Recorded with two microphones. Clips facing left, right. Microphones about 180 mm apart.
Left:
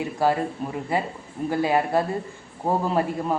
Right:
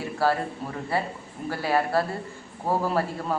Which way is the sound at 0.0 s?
15° left (ahead or behind).